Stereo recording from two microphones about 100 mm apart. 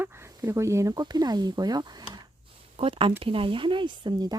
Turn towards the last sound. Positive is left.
turn(degrees=-45)  # may be behind; listen again after turning